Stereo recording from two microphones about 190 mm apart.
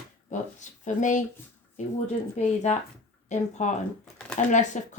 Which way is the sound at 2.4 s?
40° left (ahead or behind).